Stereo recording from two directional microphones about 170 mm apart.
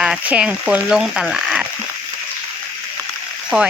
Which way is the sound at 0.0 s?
5° right (ahead or behind).